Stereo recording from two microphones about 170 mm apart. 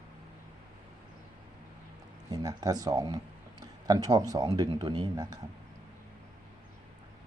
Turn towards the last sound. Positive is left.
turn(degrees=-20)  # may be behind; listen again after turning